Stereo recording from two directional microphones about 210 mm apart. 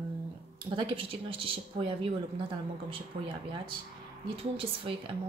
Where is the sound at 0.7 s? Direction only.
25° right (ahead or behind).